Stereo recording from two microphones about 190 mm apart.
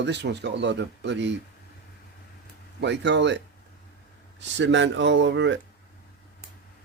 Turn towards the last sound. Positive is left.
turn(degrees=-70)  # may be behind; listen again after turning